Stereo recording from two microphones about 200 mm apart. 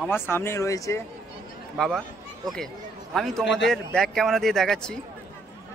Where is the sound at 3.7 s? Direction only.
Centre (ahead or behind).